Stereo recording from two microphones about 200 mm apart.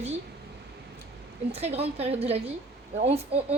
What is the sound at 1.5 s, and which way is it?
A woman's voice, 30° right (ahead or behind).